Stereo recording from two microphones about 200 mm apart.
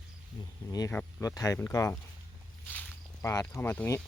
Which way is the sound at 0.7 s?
15° left (ahead or behind).